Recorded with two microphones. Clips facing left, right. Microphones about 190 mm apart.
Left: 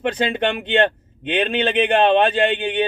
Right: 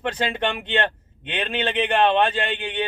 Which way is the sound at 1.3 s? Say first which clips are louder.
Left 6 dB; 25° left (ahead or behind).